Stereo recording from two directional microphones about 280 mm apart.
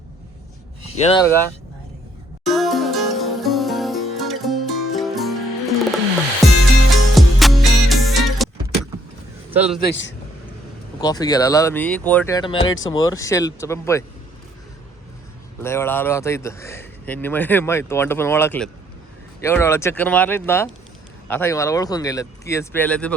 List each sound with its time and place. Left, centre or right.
0.9 s speech: left
2.4 s music: centre
9.6 s a man's voice: centre
9.8 s a man's voice: left
11.0 s speech: centre
12.6 s speech: left
12.9 s speech: centre
15.6 s speech: centre